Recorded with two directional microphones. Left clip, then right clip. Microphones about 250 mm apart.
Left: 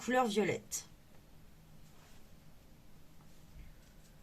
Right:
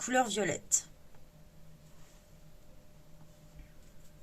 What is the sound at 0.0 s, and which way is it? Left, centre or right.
Speech, right.